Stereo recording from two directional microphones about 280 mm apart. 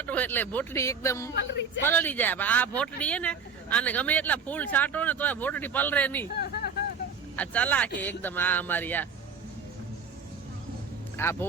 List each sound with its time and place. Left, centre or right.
0.0 s speech: centre
1.4 s a man's voice: left
1.8 s speech: centre
7.3 s speech: centre
11.2 s speech: centre